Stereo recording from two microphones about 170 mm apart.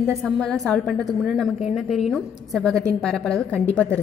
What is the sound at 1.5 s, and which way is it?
Speech, 40° left (ahead or behind).